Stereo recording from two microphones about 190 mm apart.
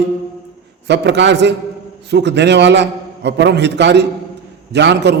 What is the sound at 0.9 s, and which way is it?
A man's voice, 65° right (ahead or behind).